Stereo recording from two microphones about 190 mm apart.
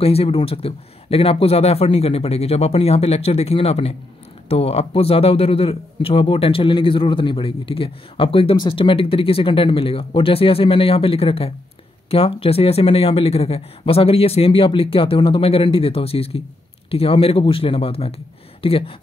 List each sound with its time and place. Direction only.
0.0 s speech: 30° left (ahead or behind)